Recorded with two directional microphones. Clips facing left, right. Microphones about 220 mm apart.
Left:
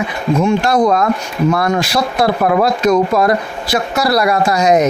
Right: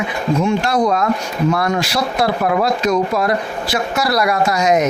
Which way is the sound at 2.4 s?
50° left (ahead or behind).